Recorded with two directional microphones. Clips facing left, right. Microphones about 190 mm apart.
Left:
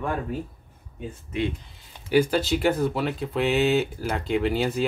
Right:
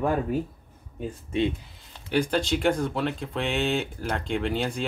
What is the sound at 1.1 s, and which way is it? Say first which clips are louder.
Speech: right 2 dB; 25° right (ahead or behind).